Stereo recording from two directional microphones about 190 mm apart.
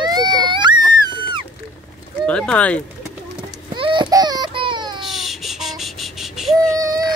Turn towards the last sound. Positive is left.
turn(degrees=-20)  # may be behind; listen again after turning